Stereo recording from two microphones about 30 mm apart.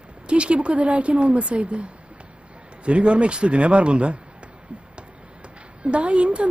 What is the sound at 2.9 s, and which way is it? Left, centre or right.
Speech, right.